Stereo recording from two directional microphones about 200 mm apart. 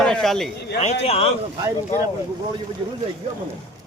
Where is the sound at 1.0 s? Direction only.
30° left (ahead or behind).